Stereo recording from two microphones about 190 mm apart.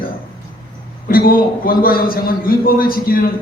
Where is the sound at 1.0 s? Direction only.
50° left (ahead or behind).